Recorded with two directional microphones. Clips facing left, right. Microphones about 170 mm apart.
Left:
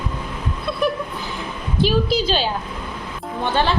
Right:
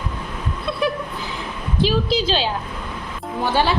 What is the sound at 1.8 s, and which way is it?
Speech, centre (ahead or behind).